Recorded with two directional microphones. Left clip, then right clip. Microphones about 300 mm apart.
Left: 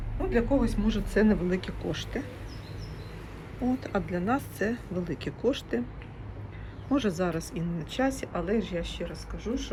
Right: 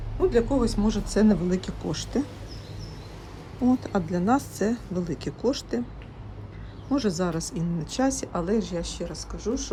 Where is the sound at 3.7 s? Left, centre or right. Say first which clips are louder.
Right 5 dB; centre.